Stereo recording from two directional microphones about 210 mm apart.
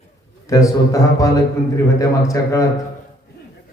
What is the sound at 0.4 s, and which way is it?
A man's voice, 15° left (ahead or behind).